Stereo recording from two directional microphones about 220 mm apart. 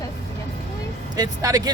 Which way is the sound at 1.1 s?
15° right (ahead or behind).